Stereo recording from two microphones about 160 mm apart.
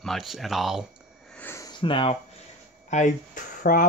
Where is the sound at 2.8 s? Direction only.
50° left (ahead or behind).